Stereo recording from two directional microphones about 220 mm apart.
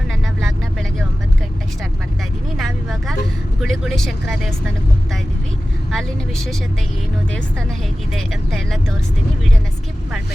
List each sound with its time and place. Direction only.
2.6 s vehicle: centre (ahead or behind)
3.6 s speech: centre (ahead or behind)
5.9 s speech: centre (ahead or behind)
8.1 s speech: centre (ahead or behind)